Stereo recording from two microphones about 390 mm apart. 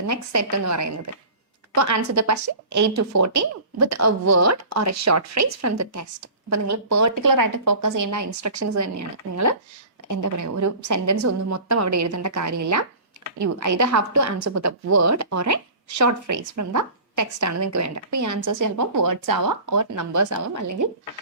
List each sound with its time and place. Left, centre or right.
0.1 s a woman's voice: right